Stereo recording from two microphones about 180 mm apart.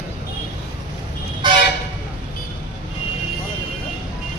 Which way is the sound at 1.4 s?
25° right (ahead or behind).